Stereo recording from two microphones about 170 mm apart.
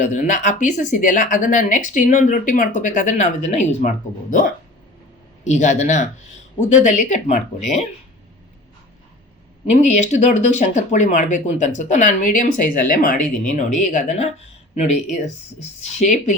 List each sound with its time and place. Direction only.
0.0 s speech: 45° left (ahead or behind)
5.5 s speech: 45° left (ahead or behind)
9.9 s speech: 45° left (ahead or behind)